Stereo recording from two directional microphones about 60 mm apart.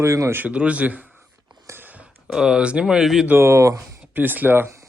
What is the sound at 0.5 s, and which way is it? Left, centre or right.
Speech, centre.